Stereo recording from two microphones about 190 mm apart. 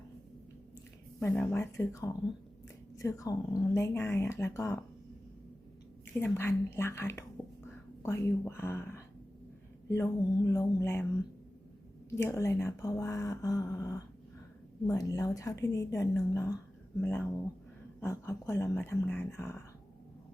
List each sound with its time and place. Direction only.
1.2 s speech: 10° left (ahead or behind)
6.1 s speech: 10° left (ahead or behind)
12.1 s speech: 15° left (ahead or behind)